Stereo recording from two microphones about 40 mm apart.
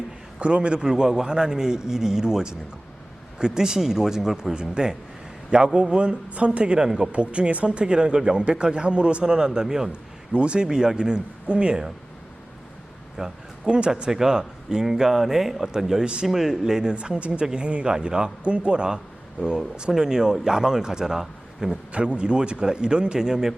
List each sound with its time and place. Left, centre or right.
0.3 s a man's voice: right; by 4.5 s centre
4.5 s speech: right
6.7 s speech: centre
7.1 s speech: right; by 9.9 s centre
9.9 s speech: right
13.2 s speech: centre
13.7 s speech: right
13.9 s speech: centre
16.9 s speech: right; by 21.8 s centre
21.9 s speech: right
23.2 s speech: centre